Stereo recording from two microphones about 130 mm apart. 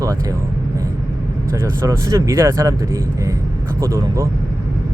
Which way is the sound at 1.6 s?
25° right (ahead or behind).